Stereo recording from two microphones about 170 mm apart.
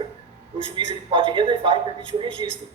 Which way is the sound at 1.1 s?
30° right (ahead or behind).